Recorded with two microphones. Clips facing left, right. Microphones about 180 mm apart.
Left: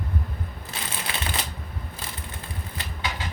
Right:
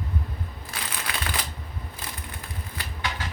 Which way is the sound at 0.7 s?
25° left (ahead or behind).